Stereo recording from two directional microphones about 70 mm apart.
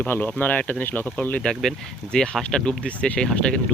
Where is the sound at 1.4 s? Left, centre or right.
Centre.